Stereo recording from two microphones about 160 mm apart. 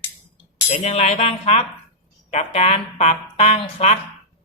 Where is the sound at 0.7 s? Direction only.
45° left (ahead or behind).